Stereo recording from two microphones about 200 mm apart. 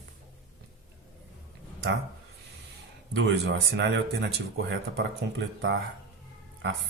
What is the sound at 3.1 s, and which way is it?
Speech, 60° right (ahead or behind).